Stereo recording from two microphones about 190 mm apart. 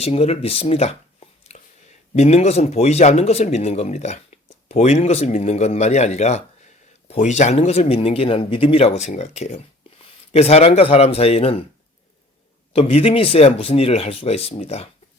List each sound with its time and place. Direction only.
0.0 s speech: 30° left (ahead or behind)
12.7 s speech: 30° left (ahead or behind)